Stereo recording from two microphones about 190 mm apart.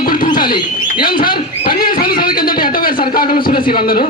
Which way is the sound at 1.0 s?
50° left (ahead or behind).